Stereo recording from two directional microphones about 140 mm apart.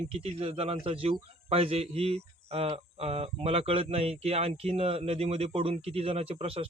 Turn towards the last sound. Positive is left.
turn(degrees=-45)  # may be behind; listen again after turning